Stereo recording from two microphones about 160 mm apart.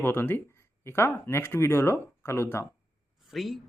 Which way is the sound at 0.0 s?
15° left (ahead or behind).